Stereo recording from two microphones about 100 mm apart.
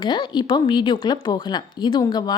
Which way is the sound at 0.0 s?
50° left (ahead or behind).